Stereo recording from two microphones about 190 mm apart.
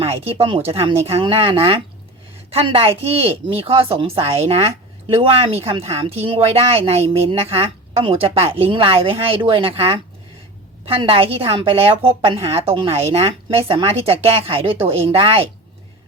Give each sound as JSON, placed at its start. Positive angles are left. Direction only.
{"t": 0.0, "sound": "a woman's voice", "side_deg": -30}